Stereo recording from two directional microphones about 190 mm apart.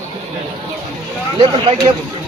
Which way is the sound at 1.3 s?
25° right (ahead or behind).